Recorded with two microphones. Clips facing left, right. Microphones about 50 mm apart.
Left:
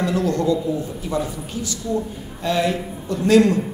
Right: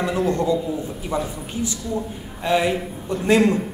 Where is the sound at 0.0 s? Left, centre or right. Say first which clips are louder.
Left 1 dB; right.